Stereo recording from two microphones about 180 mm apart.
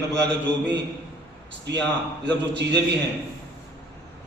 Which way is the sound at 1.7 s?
70° right (ahead or behind).